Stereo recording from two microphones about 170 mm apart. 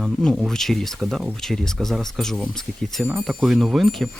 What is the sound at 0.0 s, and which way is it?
Speech, centre (ahead or behind).